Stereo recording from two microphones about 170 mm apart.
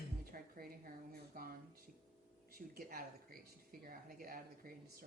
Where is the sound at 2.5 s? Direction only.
60° right (ahead or behind).